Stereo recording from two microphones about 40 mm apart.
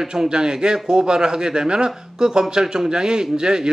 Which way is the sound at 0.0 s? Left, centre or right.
Centre.